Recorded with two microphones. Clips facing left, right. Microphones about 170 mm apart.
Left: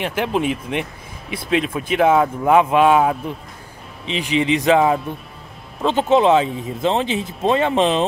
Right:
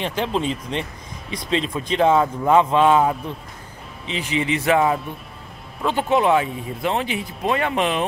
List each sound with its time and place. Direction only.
0.0 s speech: 10° left (ahead or behind)